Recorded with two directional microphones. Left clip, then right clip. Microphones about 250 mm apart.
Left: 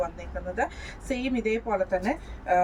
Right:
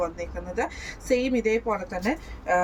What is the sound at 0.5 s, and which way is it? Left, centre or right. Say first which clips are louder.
A woman's voice: right 1 dB; centre.